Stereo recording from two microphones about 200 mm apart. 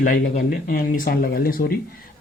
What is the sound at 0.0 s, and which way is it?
Speech, 45° left (ahead or behind).